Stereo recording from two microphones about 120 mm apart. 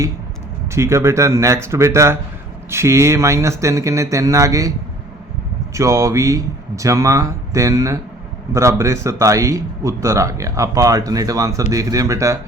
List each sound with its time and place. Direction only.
0.7 s speech: 25° right (ahead or behind)
5.7 s speech: 25° right (ahead or behind)